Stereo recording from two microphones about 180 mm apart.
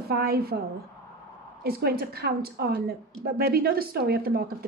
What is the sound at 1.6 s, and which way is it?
A woman's voice, 60° right (ahead or behind).